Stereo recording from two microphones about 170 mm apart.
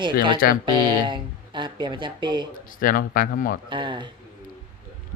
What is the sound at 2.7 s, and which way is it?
Speech, 55° left (ahead or behind).